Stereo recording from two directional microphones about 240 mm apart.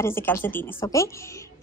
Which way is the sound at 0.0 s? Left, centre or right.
Centre.